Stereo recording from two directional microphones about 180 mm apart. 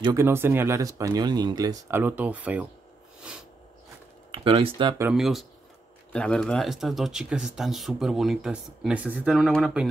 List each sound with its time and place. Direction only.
0.0 s speech: 15° right (ahead or behind)
4.3 s speech: 30° right (ahead or behind)
5.1 s speech: centre (ahead or behind)